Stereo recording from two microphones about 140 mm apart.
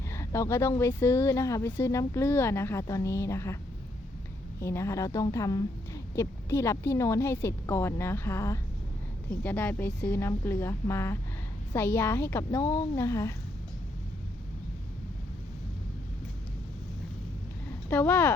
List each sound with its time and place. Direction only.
0.1 s speech: 20° left (ahead or behind)
4.6 s speech: 20° left (ahead or behind)
17.8 s speech: 15° left (ahead or behind)